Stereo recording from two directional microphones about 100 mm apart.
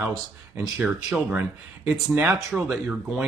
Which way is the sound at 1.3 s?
15° right (ahead or behind).